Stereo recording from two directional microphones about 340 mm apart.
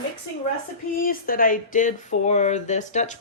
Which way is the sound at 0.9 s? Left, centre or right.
Left.